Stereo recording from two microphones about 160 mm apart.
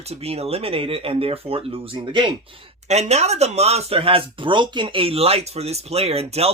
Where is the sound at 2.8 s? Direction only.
45° right (ahead or behind).